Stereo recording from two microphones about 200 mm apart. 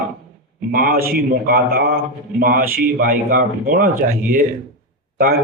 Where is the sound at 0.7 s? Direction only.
45° right (ahead or behind).